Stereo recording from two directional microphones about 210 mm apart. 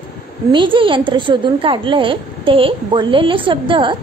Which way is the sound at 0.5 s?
25° right (ahead or behind).